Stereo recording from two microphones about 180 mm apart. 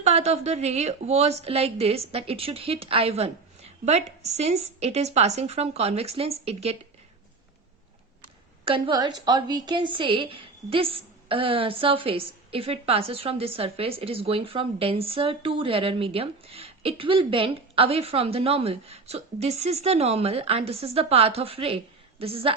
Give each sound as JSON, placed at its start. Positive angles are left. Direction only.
{"t": 0.0, "sound": "a woman's voice", "side_deg": -35}
{"t": 8.6, "sound": "a woman's voice", "side_deg": -25}